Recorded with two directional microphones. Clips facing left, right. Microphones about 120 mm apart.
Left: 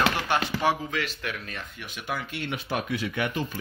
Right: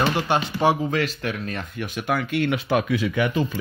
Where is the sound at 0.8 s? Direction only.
40° right (ahead or behind).